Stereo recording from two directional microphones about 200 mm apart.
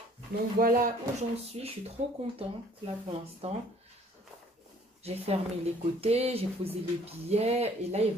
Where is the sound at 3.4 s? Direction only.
30° right (ahead or behind).